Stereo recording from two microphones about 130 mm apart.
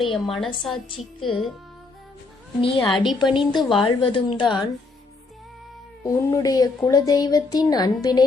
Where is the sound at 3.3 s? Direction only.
35° left (ahead or behind).